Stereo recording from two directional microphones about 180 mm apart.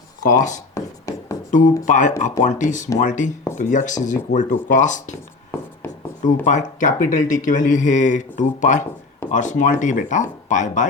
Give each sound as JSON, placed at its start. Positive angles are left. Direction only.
{"t": 0.2, "sound": "speech", "side_deg": 45}
{"t": 0.7, "sound": "writing", "side_deg": 20}
{"t": 1.5, "sound": "speech", "side_deg": 45}
{"t": 6.2, "sound": "speech", "side_deg": 40}